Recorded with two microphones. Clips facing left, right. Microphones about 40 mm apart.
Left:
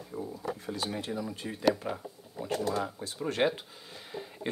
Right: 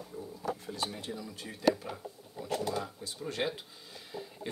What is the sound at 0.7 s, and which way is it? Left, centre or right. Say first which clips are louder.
Speech: left 3 dB; left.